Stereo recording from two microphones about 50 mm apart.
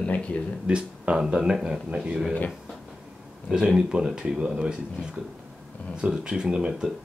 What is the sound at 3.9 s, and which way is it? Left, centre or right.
Speech, centre.